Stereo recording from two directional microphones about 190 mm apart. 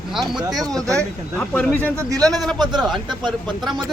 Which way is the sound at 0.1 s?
Centre (ahead or behind).